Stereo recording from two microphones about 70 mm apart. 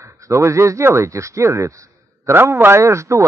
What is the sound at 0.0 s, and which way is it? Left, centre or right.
Speech, right.